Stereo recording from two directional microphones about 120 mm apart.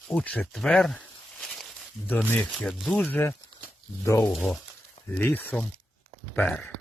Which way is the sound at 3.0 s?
15° left (ahead or behind).